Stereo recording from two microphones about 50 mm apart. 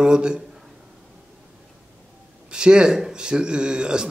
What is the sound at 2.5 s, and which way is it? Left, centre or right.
A man's voice, centre.